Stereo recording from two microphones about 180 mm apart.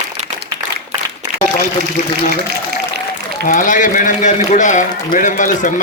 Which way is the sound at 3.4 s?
50° left (ahead or behind).